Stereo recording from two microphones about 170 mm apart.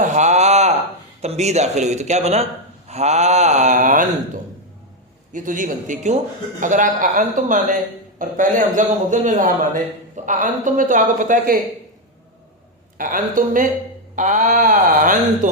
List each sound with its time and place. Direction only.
0.0 s a sound: 45° right (ahead or behind)
1.2 s a man's voice: 40° right (ahead or behind)
5.3 s a man's voice: 50° right (ahead or behind)
13.0 s a man's voice: 55° right (ahead or behind)